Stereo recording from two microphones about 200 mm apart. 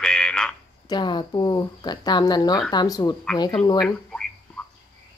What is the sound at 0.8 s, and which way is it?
Speech, 20° left (ahead or behind).